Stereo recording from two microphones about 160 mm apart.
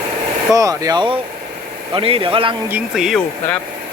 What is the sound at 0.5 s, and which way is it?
A man's voice, 20° right (ahead or behind).